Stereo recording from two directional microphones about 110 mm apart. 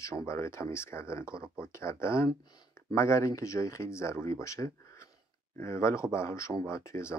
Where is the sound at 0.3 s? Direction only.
25° left (ahead or behind).